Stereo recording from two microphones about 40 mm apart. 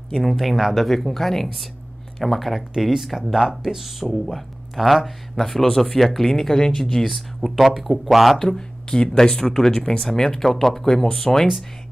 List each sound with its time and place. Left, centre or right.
0.2 s speech: centre
2.7 s speech: centre
8.4 s speech: centre